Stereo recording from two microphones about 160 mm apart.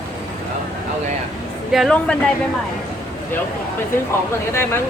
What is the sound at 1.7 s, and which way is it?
Speech, centre (ahead or behind).